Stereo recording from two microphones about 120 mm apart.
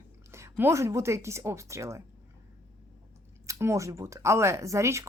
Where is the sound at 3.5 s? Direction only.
25° right (ahead or behind).